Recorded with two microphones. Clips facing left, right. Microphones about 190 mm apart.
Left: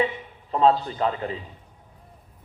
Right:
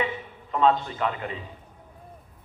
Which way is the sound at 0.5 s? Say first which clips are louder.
Left 2 dB; 35° left (ahead or behind).